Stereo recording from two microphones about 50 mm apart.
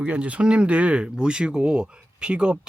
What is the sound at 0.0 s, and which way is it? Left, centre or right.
Speech, right.